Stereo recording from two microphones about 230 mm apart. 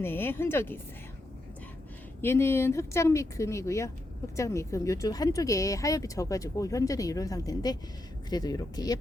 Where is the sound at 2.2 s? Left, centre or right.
Centre.